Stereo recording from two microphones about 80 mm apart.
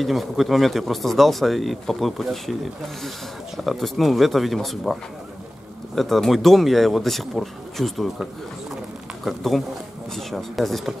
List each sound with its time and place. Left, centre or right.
0.0 s speech: centre
3.6 s speech: centre
5.9 s speech: centre